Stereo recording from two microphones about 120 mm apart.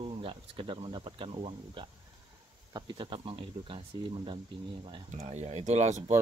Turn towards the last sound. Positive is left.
turn(degrees=-70)  # may be behind; listen again after turning